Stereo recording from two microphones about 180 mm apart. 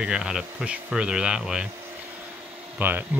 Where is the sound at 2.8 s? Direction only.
10° right (ahead or behind).